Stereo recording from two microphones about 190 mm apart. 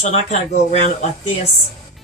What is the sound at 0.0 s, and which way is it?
Speech, 35° left (ahead or behind).